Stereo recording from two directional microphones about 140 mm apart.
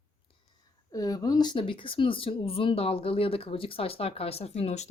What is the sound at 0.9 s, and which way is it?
Speech, 25° left (ahead or behind).